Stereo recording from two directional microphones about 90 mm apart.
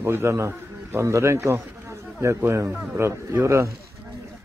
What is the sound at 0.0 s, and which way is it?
A man's voice, 30° right (ahead or behind).